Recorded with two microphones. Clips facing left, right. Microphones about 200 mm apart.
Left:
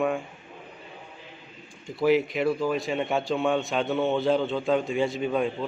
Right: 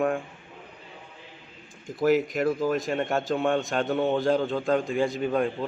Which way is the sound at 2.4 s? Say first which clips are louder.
Even; 15° right (ahead or behind).